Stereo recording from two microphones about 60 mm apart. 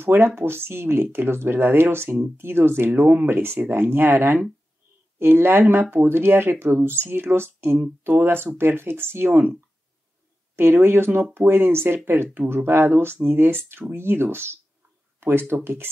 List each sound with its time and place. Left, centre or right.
0.0 s speech: right